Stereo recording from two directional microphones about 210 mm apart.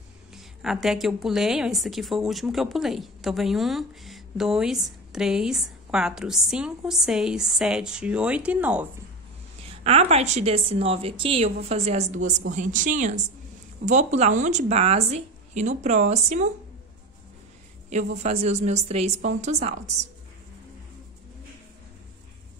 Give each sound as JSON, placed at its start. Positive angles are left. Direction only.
{"t": 0.3, "sound": "a woman's voice", "side_deg": 0}
{"t": 9.8, "sound": "a woman's voice", "side_deg": -30}
{"t": 17.8, "sound": "a woman's voice", "side_deg": -35}